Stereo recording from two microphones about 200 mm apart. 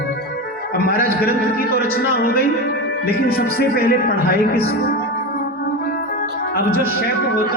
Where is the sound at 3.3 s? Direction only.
50° left (ahead or behind).